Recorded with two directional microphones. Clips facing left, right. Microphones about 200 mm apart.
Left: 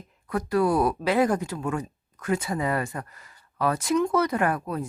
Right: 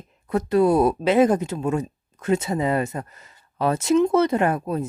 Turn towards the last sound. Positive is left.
turn(degrees=-25)  # may be behind; listen again after turning